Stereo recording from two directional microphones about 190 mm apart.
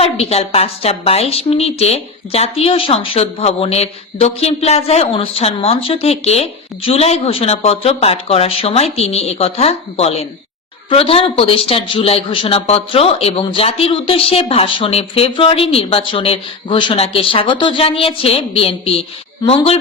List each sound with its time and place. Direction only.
0.0 s a woman's voice: 30° left (ahead or behind)